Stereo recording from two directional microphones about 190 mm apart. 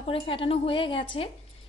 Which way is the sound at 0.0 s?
30° left (ahead or behind).